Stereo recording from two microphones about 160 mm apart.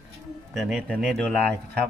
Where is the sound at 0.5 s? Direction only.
Centre (ahead or behind).